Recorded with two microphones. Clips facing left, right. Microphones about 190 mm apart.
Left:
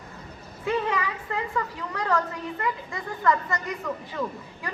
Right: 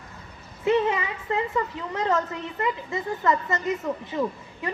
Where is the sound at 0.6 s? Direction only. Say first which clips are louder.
Right 4 dB; 20° right (ahead or behind).